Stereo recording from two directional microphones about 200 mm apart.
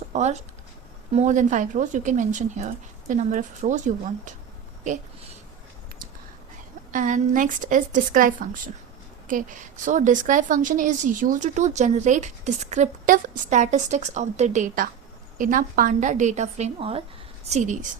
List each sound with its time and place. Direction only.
0.1 s a woman's voice: 35° right (ahead or behind)
6.9 s a woman's voice: 40° right (ahead or behind)